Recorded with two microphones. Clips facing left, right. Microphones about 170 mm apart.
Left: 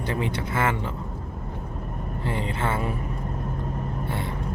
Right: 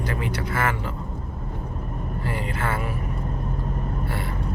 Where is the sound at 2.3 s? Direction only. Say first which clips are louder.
Left 1 dB; 25° left (ahead or behind).